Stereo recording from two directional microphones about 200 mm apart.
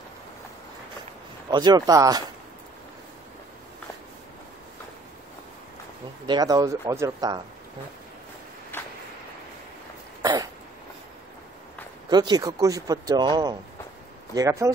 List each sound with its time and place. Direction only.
1.5 s speech: 20° right (ahead or behind)
6.2 s speech: 20° right (ahead or behind)
8.7 s a sound: 10° left (ahead or behind)
10.2 s dog: 20° right (ahead or behind)
12.1 s speech: 20° right (ahead or behind)